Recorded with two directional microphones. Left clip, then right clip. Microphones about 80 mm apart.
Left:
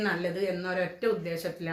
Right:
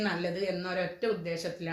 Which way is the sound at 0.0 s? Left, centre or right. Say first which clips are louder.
Left 2 dB; left.